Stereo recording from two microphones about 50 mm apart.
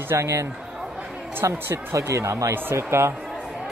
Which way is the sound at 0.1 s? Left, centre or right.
Right.